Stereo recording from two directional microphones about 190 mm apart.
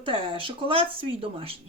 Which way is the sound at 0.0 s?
25° right (ahead or behind).